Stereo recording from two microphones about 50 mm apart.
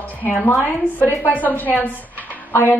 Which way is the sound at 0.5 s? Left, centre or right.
Left.